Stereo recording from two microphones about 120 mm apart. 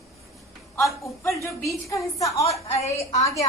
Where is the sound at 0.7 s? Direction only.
25° left (ahead or behind).